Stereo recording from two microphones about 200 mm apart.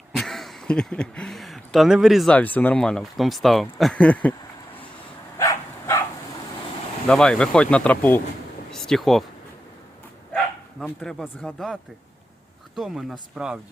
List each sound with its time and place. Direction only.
0.1 s speech: centre (ahead or behind)
5.4 s dog: 15° left (ahead or behind)
7.1 s speech: 5° left (ahead or behind)
10.8 s speech: centre (ahead or behind)